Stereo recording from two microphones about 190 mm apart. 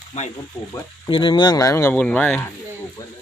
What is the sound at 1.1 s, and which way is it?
Speech, 25° left (ahead or behind).